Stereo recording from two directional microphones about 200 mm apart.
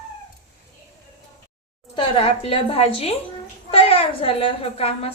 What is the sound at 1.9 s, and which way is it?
A woman's voice, 25° left (ahead or behind).